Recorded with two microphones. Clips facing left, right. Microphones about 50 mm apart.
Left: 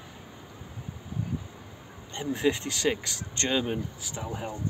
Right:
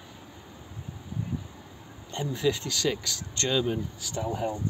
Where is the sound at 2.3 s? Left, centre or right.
Left.